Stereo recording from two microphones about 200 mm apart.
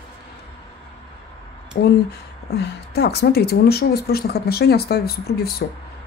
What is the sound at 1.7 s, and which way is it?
Speech, 50° left (ahead or behind).